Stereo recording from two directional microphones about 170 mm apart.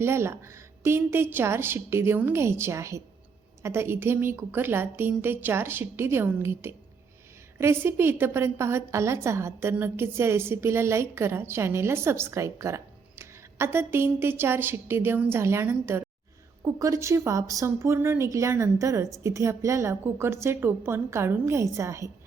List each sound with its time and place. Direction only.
0.0 s a woman's voice: 15° right (ahead or behind)